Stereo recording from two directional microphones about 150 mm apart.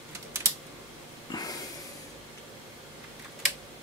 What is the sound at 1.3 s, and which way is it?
Snort, 25° left (ahead or behind).